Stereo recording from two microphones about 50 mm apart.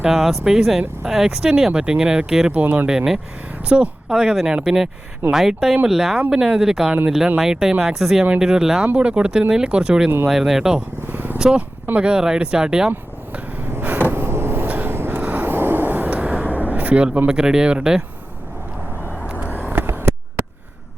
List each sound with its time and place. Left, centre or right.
0.1 s speech: centre
2.5 s speech: right
2.8 s speech: centre
4.1 s speech: centre
9.0 s speech: right
11.0 s vehicle: right
11.3 s speech: centre
14.1 s vehicle: right
17.2 s speech: centre
19.0 s vehicle: left
19.6 s vehicle: right
19.9 s a sound: right